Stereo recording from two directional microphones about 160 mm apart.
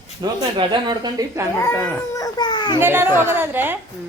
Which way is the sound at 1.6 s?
20° left (ahead or behind).